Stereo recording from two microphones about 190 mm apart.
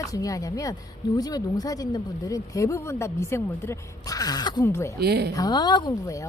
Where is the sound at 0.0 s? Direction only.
20° left (ahead or behind).